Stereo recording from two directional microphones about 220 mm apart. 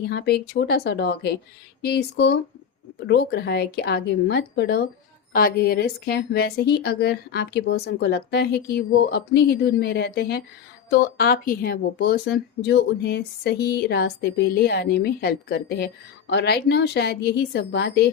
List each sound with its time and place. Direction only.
0.1 s speech: 50° left (ahead or behind)